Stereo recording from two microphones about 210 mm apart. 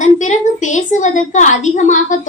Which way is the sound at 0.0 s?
35° left (ahead or behind).